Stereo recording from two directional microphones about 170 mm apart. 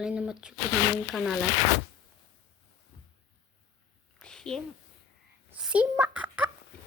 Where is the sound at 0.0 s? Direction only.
5° right (ahead or behind).